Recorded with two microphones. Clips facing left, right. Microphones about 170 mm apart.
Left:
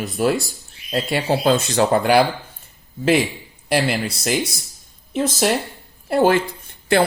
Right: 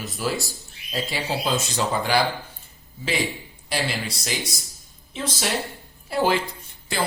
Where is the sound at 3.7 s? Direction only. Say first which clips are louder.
Left 8 dB; 60° left (ahead or behind).